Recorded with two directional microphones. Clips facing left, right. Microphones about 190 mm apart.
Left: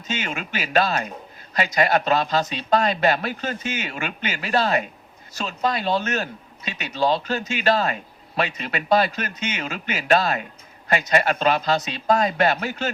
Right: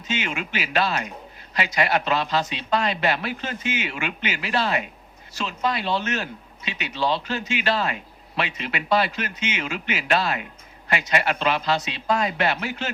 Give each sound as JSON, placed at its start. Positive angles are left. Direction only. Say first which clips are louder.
{"t": 0.1, "sound": "speech", "louder": "right 1 dB", "side_deg": 40}